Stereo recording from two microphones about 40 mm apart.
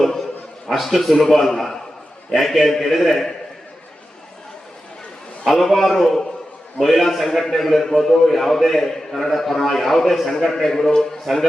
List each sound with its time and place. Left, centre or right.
0.7 s a man's voice: centre
2.3 s a man's voice: centre
5.5 s a man's voice: centre